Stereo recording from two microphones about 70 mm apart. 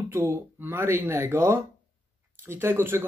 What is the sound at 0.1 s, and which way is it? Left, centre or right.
A man's voice, right.